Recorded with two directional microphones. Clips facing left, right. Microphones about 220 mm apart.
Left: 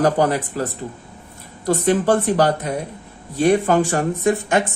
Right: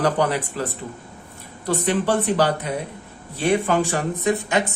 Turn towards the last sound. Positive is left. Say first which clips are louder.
# left 3 dB
turn(degrees=50)  # may be behind; listen again after turning